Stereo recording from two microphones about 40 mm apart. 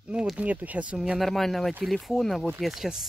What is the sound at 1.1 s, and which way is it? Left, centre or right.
Speech, centre.